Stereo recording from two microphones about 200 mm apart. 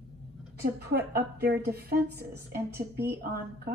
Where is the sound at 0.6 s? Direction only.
55° right (ahead or behind).